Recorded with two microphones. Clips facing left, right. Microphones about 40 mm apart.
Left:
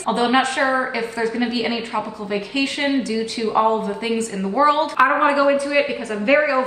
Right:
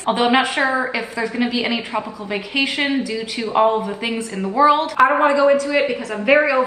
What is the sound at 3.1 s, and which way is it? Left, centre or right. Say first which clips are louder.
Speech: left 1 dB; right.